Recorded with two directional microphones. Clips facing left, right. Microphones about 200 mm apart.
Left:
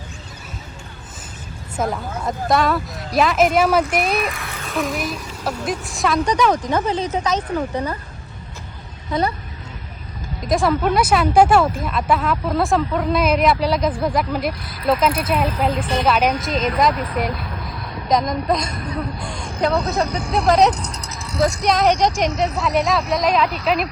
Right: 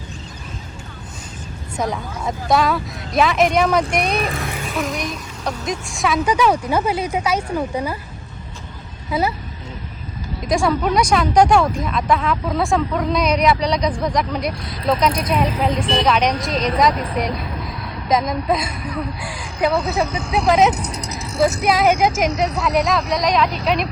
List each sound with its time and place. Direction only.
1.8 s speech: centre (ahead or behind)
4.2 s a child's voice: 30° right (ahead or behind)
4.7 s a woman's voice: centre (ahead or behind)
9.1 s speech: 5° right (ahead or behind)
10.4 s speech: centre (ahead or behind)
20.9 s vehicle: 10° right (ahead or behind)
21.2 s vehicle: 25° right (ahead or behind)
21.4 s speech: 5° right (ahead or behind)